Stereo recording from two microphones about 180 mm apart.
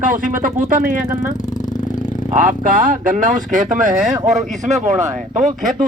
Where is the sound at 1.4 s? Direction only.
45° left (ahead or behind).